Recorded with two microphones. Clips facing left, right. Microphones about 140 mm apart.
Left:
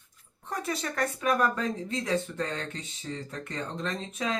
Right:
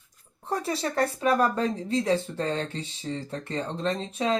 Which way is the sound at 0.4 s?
30° right (ahead or behind).